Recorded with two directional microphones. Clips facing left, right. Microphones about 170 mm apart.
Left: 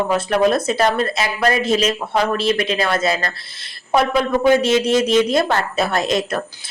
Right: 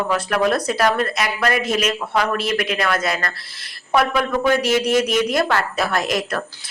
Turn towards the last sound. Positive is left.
turn(degrees=25)  # may be behind; listen again after turning